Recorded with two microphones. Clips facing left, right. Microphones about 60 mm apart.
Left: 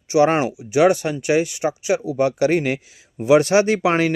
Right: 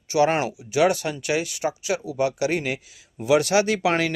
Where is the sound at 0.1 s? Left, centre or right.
Left.